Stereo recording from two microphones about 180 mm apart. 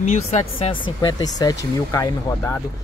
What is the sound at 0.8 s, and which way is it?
Speech, 25° left (ahead or behind).